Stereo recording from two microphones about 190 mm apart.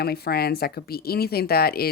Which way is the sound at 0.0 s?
55° left (ahead or behind).